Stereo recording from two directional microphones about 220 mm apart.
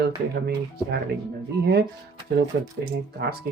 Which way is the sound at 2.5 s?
40° right (ahead or behind).